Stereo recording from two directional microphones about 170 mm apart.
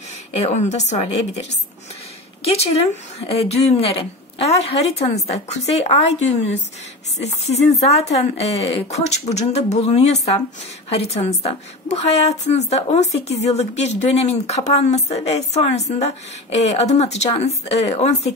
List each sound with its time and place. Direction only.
0.3 s a woman's voice: 40° left (ahead or behind)
2.4 s a woman's voice: 35° left (ahead or behind)
7.2 s a woman's voice: 40° left (ahead or behind)